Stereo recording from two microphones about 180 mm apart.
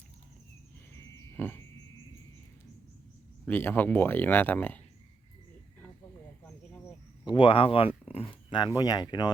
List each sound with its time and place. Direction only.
1.4 s frog: 10° left (ahead or behind)
3.4 s speech: 10° left (ahead or behind)
7.3 s speech: 30° left (ahead or behind)